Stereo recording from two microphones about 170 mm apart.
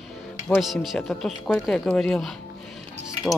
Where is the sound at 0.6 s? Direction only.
Centre (ahead or behind).